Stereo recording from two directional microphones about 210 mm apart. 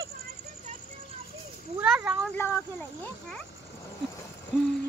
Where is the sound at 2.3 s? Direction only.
10° left (ahead or behind).